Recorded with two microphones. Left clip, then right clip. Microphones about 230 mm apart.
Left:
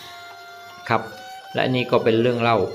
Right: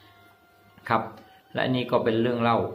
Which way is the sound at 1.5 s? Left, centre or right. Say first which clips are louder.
Left 5 dB; centre.